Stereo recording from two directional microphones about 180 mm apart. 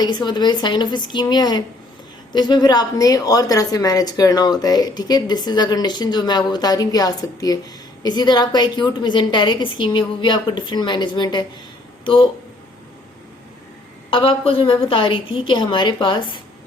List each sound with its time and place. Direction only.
0.0 s a woman's voice: 25° left (ahead or behind)
14.1 s a woman's voice: 30° left (ahead or behind)